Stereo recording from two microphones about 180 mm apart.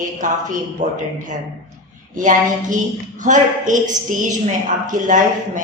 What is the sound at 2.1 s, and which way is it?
Mantra, 45° right (ahead or behind).